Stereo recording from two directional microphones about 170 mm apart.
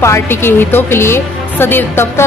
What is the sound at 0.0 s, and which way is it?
A woman's voice, 15° left (ahead or behind).